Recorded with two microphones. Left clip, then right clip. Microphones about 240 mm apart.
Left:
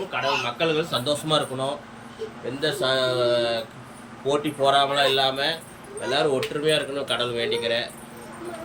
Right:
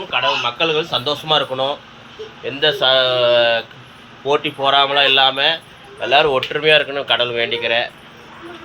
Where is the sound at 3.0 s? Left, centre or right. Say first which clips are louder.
Right 7 dB; right.